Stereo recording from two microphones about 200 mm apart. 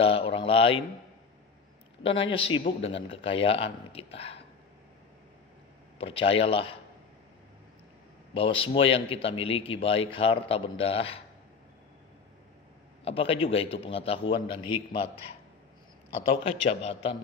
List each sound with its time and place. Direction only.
0.0 s a man's voice: 30° left (ahead or behind)
2.0 s a man's voice: 25° left (ahead or behind)
5.9 s a man's voice: 25° left (ahead or behind)
8.4 s a man's voice: 25° left (ahead or behind)
13.0 s a man's voice: 30° left (ahead or behind)
16.6 s a man's voice: 30° left (ahead or behind)